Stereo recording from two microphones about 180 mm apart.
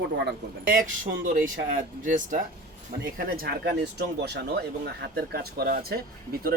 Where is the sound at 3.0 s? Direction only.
55° right (ahead or behind).